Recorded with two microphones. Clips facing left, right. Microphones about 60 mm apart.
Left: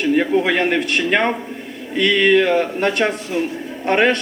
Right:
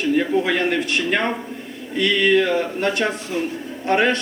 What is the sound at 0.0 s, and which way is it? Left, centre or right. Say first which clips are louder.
A man's voice: left 3 dB; left.